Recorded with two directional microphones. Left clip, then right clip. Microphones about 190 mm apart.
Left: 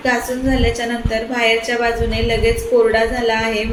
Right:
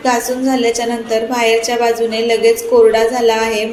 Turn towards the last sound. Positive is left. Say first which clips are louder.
# right 4 dB
turn(degrees=-20)  # may be behind; listen again after turning